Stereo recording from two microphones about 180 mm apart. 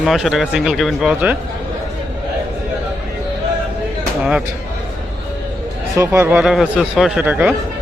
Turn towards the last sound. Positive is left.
turn(degrees=-10)  # may be behind; listen again after turning